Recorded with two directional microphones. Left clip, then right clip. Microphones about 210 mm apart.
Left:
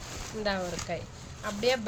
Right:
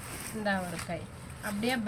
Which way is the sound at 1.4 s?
55° left (ahead or behind).